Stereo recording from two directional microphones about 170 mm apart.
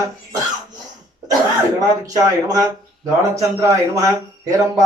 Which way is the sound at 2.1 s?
20° right (ahead or behind).